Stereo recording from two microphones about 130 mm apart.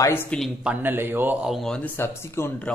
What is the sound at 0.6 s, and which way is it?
Speech, 10° right (ahead or behind).